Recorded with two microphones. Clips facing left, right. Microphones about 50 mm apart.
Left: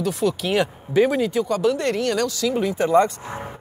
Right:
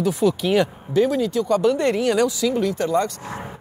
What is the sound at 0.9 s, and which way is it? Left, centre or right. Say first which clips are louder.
Speech: left 1 dB; centre.